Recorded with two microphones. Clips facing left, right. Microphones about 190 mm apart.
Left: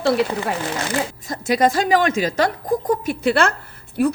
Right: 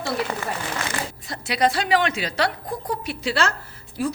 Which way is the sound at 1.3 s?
45° left (ahead or behind).